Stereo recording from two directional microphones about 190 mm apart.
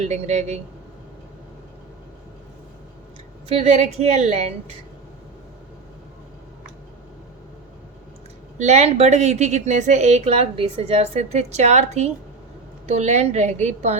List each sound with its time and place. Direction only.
0.0 s a woman's voice: 35° right (ahead or behind)
3.5 s a woman's voice: 35° right (ahead or behind)
8.5 s a woman's voice: 35° right (ahead or behind)